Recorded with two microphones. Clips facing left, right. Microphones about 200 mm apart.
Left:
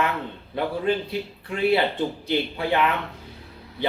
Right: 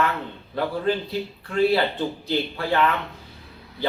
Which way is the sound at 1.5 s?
20° left (ahead or behind).